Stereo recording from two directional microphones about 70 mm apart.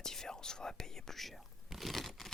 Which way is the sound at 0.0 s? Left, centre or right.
Centre.